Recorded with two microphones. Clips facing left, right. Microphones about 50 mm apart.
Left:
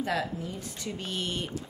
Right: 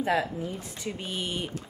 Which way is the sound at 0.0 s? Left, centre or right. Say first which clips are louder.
Right 4 dB; right.